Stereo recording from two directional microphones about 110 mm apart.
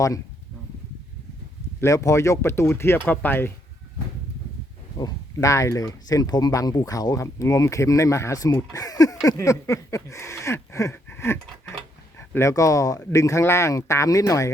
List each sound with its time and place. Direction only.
1.8 s speech: 30° left (ahead or behind)
4.9 s speech: 35° left (ahead or behind)